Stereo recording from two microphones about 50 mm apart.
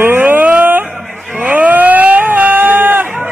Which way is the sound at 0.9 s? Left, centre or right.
Right.